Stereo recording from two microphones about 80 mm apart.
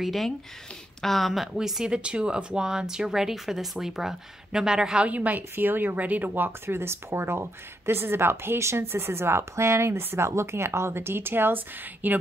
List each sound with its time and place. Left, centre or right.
0.0 s speech: centre; by 12.2 s right